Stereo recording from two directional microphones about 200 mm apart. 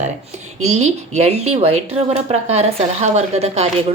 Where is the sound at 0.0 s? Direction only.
35° right (ahead or behind).